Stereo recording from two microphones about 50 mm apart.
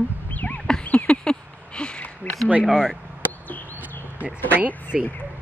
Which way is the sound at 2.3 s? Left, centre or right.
Left.